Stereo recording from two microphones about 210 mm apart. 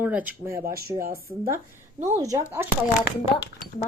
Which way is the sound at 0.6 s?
45° right (ahead or behind).